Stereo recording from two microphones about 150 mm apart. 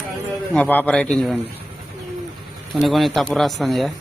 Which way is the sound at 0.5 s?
10° left (ahead or behind).